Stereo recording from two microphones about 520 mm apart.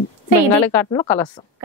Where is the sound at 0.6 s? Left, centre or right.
Centre.